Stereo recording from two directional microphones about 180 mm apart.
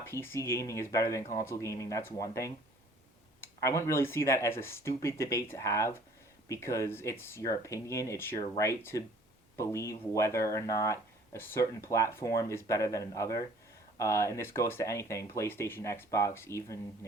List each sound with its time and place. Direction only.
0.0 s speech: 15° left (ahead or behind)
3.6 s speech: 15° left (ahead or behind)